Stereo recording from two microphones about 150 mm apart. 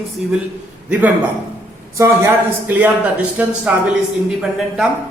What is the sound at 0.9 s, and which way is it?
A man's voice, 10° right (ahead or behind).